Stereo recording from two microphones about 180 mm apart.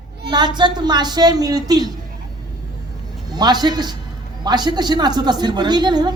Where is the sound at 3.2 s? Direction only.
25° right (ahead or behind).